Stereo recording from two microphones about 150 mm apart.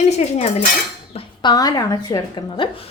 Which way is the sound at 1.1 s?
40° left (ahead or behind).